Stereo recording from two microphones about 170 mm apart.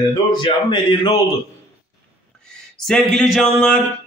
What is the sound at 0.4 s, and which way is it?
Speech, 30° left (ahead or behind).